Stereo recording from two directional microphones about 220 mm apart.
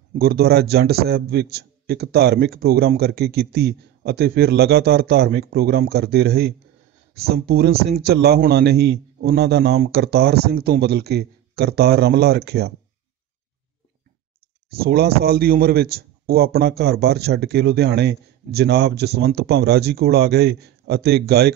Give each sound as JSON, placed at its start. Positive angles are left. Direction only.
{"t": 0.1, "sound": "speech", "side_deg": -45}
{"t": 14.8, "sound": "speech", "side_deg": -45}